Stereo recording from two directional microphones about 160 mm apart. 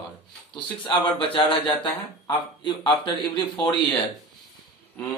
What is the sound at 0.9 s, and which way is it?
A man's voice, 30° left (ahead or behind).